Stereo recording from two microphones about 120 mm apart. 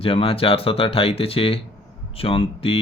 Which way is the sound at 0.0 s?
50° left (ahead or behind).